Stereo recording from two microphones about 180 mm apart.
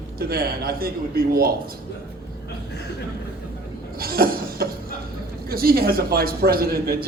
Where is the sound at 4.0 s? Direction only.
55° right (ahead or behind).